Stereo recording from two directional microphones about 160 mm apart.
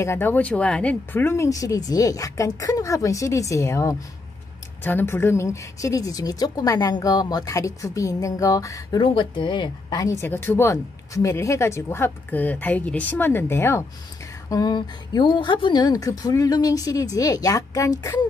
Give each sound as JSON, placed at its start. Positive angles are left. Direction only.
{"t": 0.0, "sound": "a woman's voice", "side_deg": 15}
{"t": 14.5, "sound": "a woman's voice", "side_deg": 25}